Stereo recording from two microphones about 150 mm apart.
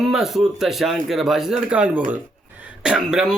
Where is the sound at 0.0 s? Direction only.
Centre (ahead or behind).